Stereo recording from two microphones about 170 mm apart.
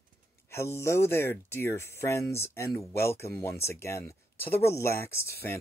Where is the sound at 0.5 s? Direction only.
15° left (ahead or behind).